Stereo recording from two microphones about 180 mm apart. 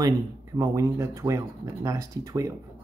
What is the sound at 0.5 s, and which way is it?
Speech, 20° right (ahead or behind).